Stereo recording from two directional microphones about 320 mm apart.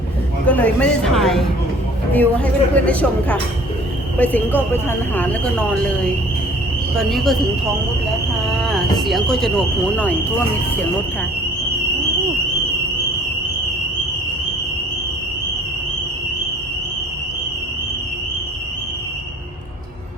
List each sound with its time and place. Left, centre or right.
0.4 s a woman's voice: centre
6.9 s a woman's voice: centre